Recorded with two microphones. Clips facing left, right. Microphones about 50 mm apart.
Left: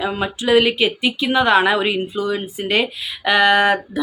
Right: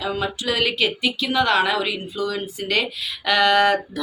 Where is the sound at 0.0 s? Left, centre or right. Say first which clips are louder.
Left 3 dB; left.